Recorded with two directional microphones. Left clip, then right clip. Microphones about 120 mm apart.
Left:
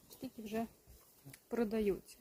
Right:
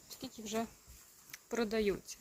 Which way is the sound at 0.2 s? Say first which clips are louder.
Right 2 dB; 10° left (ahead or behind).